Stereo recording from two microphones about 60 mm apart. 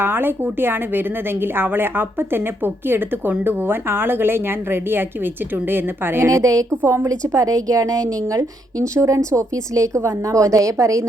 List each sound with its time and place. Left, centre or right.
0.0 s a woman's voice: right
6.2 s speech: right
6.8 s speech: right
7.1 s speech: right